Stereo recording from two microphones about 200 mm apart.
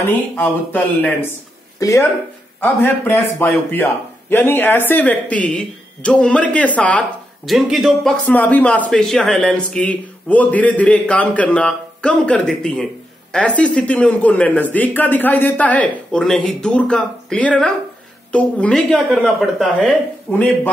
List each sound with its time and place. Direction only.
0.0 s speech: 10° left (ahead or behind)